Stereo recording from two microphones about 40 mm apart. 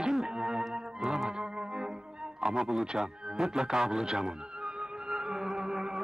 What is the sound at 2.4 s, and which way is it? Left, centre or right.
Speech, centre.